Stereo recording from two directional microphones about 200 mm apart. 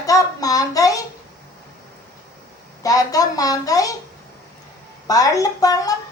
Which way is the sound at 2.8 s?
15° left (ahead or behind).